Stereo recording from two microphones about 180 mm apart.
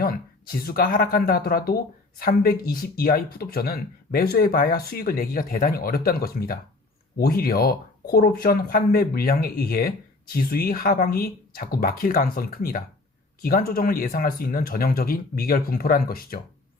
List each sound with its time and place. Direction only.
0.0 s speech: 55° left (ahead or behind)